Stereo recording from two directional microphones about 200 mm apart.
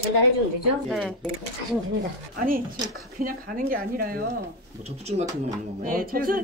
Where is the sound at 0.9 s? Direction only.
Centre (ahead or behind).